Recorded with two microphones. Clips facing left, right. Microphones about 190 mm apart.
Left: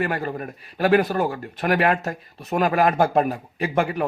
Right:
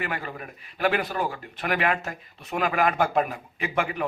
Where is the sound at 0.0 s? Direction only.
40° left (ahead or behind).